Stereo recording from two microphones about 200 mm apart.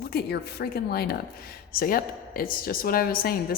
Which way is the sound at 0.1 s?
55° left (ahead or behind).